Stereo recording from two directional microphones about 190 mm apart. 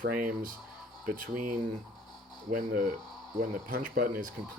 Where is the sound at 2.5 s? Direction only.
50° right (ahead or behind).